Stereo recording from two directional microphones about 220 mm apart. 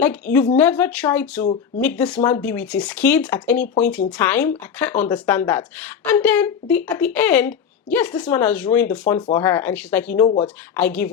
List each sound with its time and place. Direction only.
0.0 s speech: 10° left (ahead or behind)